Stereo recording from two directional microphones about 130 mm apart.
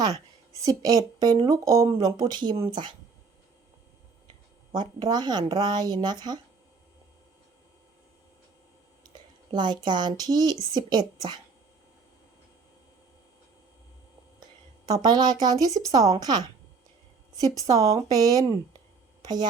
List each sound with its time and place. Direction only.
0.6 s a woman's voice: 25° right (ahead or behind)
4.7 s a woman's voice: 30° right (ahead or behind)
9.5 s a woman's voice: 35° right (ahead or behind)
14.8 s a woman's voice: 30° right (ahead or behind)